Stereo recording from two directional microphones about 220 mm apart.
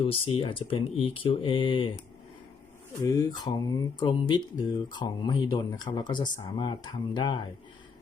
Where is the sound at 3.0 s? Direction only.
15° left (ahead or behind).